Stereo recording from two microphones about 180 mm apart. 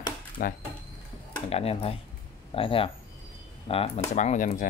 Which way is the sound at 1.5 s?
35° left (ahead or behind).